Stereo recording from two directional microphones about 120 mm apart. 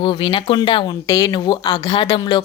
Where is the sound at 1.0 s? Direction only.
30° left (ahead or behind).